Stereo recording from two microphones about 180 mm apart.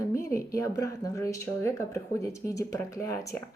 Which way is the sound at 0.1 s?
15° left (ahead or behind).